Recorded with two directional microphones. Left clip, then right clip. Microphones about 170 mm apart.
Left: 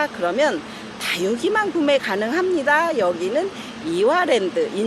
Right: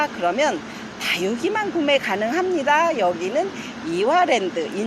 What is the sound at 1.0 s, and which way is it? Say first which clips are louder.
Speech: left 1 dB; 20° left (ahead or behind).